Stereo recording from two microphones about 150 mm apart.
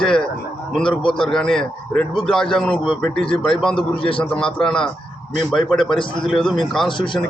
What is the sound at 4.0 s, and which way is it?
Speech, 35° left (ahead or behind).